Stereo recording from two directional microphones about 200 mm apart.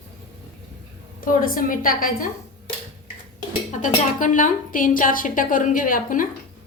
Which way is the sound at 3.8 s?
40° left (ahead or behind).